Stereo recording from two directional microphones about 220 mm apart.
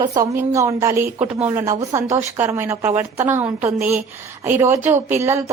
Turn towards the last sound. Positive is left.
turn(degrees=-15)  # may be behind; listen again after turning